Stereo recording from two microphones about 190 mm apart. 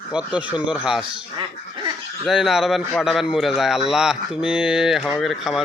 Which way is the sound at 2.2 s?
Centre (ahead or behind).